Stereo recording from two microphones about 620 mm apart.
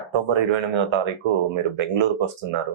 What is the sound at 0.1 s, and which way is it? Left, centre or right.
Speech, right.